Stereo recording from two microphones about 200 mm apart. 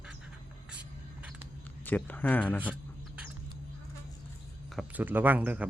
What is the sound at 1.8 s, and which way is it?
Speech, 10° left (ahead or behind).